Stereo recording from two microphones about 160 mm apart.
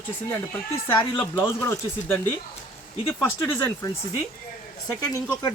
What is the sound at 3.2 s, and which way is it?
Speech, 15° left (ahead or behind).